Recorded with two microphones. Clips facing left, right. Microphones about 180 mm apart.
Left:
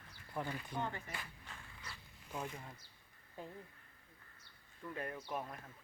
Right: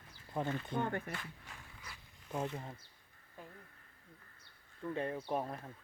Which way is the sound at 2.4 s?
25° right (ahead or behind).